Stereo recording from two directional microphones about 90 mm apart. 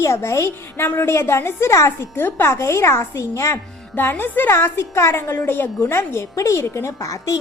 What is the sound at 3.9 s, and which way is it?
A woman's voice, 25° left (ahead or behind).